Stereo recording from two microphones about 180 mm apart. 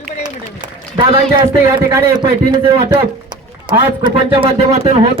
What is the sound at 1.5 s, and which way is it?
Speech, 15° right (ahead or behind).